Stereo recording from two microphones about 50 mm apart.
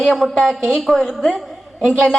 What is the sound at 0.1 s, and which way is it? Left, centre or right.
A woman's voice, centre.